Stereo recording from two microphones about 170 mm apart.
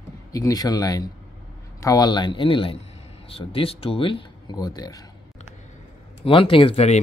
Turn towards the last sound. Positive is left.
turn(degrees=40)  # may be behind; listen again after turning